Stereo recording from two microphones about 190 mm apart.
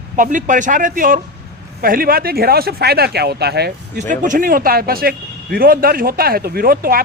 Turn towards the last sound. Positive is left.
turn(degrees=-50)  # may be behind; listen again after turning